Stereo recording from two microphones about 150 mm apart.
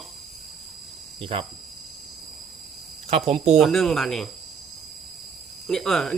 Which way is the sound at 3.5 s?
Centre (ahead or behind).